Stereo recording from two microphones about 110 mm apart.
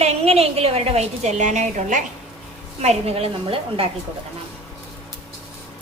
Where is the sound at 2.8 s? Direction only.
75° right (ahead or behind); by 3.8 s 55° right (ahead or behind).